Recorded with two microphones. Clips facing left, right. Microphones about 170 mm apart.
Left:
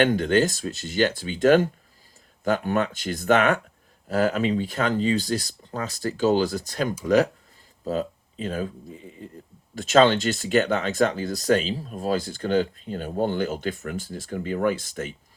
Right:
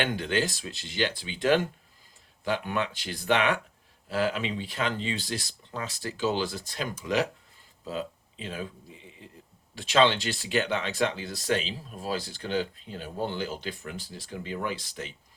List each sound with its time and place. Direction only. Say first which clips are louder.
0.0 s speech: left 8 dB; 45° left (ahead or behind)